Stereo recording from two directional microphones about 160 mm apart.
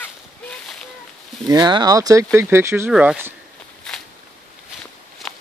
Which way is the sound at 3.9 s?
5° left (ahead or behind).